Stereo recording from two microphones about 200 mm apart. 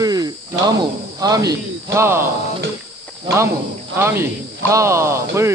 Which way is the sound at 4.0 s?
10° right (ahead or behind).